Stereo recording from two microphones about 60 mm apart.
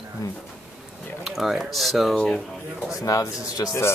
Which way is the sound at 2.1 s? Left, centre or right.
Centre.